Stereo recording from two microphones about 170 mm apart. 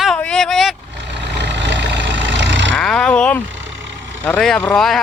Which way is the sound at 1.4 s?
90° right.